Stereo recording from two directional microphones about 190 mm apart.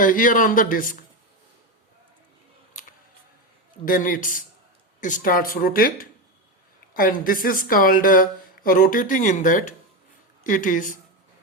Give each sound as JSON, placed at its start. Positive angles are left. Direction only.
{"t": 0.0, "sound": "speech", "side_deg": 45}
{"t": 3.8, "sound": "speech", "side_deg": 45}